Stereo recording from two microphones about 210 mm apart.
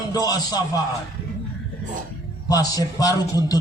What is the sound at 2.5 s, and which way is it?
A man's voice, 15° left (ahead or behind).